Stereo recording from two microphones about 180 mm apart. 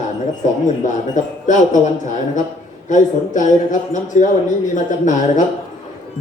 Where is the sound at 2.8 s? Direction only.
45° left (ahead or behind).